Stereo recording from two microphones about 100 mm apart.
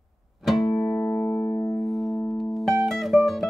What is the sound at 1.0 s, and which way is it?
Music, 15° left (ahead or behind).